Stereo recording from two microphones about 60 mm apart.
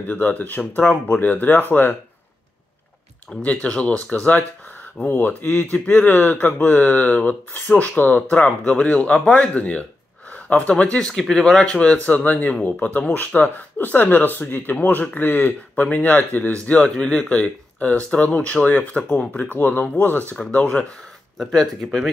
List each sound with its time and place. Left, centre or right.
0.0 s speech: left
0.8 s speech: centre
1.2 s speech: left
3.3 s speech: centre
3.6 s speech: left
12.1 s speech: left
21.5 s speech: centre